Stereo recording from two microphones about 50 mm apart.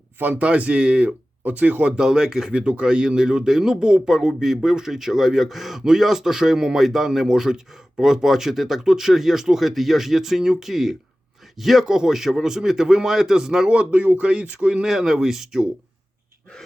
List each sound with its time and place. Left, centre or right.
0.2 s speech: right
2.0 s a man's voice: centre
2.5 s a man's voice: right
14.8 s a man's voice: centre